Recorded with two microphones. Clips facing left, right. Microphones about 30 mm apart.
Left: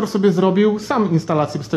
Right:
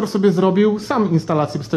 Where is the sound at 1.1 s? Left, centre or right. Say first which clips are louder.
Even; centre.